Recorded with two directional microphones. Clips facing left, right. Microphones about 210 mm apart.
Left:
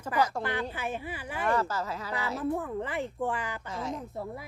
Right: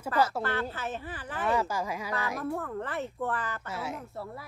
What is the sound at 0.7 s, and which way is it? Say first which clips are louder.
Speech: left 1 dB; 10° left (ahead or behind).